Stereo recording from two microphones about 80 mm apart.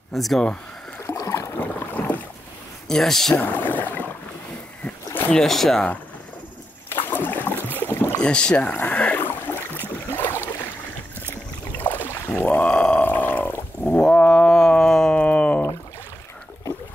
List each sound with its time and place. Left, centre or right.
0.1 s speech: centre
1.0 s boat: left
1.6 s boat: left
2.9 s speech: centre
3.3 s speech: left
4.8 s a sound: left
5.3 s speech: centre
6.9 s boat: left
7.5 s a sound: right
7.8 s boat: left
8.2 s speech: centre
10.1 s boat: left
11.8 s a sound: left